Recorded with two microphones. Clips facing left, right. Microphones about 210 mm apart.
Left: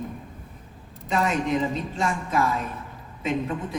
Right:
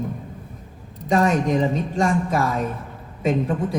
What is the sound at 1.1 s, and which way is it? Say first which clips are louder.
A man's voice: right 5 dB; 40° right (ahead or behind).